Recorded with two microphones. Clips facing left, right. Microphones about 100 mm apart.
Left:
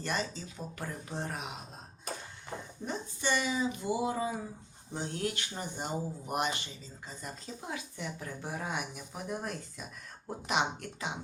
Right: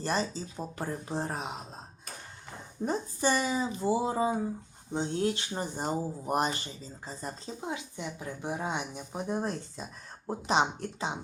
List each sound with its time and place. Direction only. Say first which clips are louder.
0.0 s speech: right 4 dB; 35° right (ahead or behind)
2.8 s speech: right 7 dB; 40° right (ahead or behind)